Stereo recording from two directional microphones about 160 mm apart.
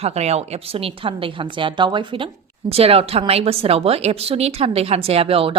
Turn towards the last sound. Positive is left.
turn(degrees=-35)  # may be behind; listen again after turning